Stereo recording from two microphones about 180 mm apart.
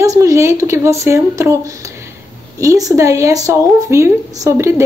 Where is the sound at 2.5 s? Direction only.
20° right (ahead or behind).